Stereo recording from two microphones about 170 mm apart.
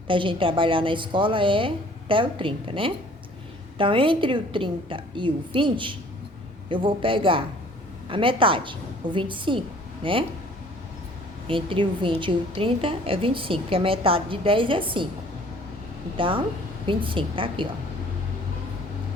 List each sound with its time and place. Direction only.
0.1 s a woman's voice: 30° right (ahead or behind)
11.4 s a woman's voice: 30° right (ahead or behind)
16.1 s a woman's voice: 30° right (ahead or behind)